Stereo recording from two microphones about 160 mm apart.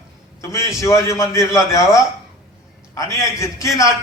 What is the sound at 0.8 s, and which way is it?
A man's voice, 20° left (ahead or behind).